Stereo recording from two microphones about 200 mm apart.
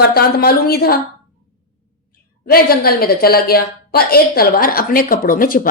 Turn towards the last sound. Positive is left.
turn(degrees=45)  # may be behind; listen again after turning